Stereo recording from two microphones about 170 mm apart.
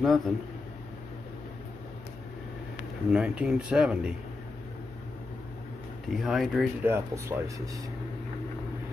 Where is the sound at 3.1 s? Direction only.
5° right (ahead or behind).